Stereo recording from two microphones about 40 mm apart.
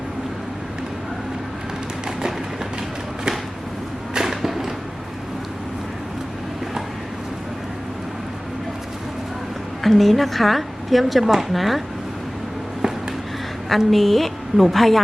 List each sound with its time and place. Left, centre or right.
4.1 s a sound: centre
9.8 s a woman's voice: centre
13.7 s a woman's voice: centre